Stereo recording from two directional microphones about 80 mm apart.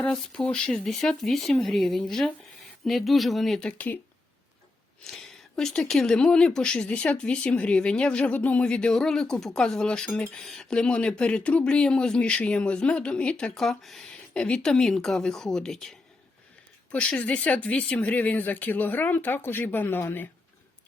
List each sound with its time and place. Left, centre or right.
0.4 s speech: centre
3.7 s speech: centre
5.0 s speech: centre; by 20.3 s left